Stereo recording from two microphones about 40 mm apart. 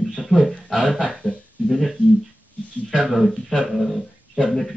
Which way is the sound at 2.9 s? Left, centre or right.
Centre.